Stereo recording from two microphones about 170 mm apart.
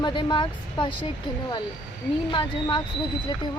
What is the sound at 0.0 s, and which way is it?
Speech, 25° left (ahead or behind).